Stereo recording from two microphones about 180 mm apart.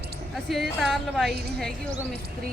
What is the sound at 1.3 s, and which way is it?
Speech, 65° right (ahead or behind).